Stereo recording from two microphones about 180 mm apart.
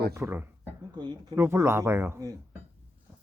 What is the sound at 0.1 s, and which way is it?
Speech, 15° right (ahead or behind).